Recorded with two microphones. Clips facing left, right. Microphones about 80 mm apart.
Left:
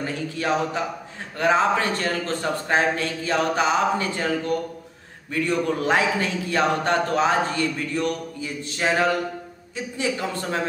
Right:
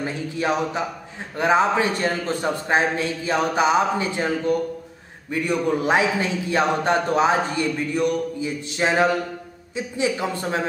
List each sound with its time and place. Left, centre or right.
0.0 s a man's voice: centre